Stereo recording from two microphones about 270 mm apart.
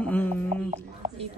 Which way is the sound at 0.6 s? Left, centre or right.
Right.